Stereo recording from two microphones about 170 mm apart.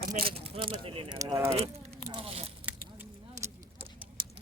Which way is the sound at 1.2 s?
15° right (ahead or behind).